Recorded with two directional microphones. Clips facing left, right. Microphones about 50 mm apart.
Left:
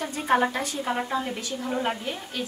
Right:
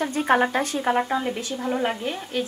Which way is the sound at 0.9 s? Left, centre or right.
Right.